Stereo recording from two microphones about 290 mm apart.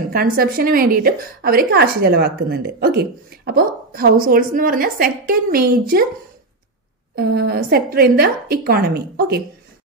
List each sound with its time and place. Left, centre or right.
0.0 s a woman's voice: right
7.2 s a woman's voice: right